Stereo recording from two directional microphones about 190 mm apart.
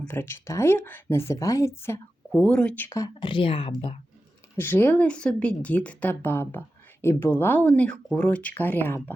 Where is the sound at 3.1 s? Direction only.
25° left (ahead or behind).